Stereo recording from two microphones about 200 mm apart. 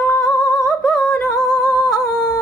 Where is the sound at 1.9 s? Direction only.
Centre (ahead or behind).